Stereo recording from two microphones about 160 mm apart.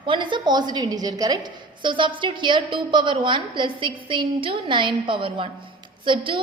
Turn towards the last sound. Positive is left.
turn(degrees=-30)  # may be behind; listen again after turning